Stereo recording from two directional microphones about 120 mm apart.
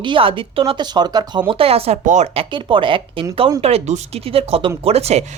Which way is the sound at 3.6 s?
60° right (ahead or behind).